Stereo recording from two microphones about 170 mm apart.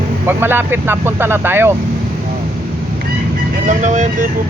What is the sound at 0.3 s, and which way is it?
Speech, 10° right (ahead or behind).